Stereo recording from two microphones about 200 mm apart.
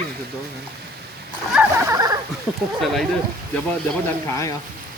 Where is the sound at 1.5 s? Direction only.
10° right (ahead or behind).